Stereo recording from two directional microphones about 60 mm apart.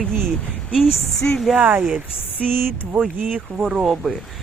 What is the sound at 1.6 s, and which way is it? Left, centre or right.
Speech, right.